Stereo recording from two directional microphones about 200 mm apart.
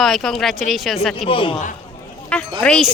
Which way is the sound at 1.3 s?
25° left (ahead or behind).